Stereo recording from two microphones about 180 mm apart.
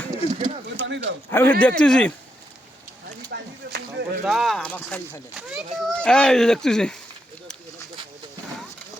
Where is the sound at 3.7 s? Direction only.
65° right (ahead or behind).